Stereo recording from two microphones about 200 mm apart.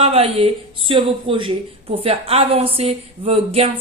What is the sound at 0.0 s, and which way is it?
A woman's voice, 30° right (ahead or behind).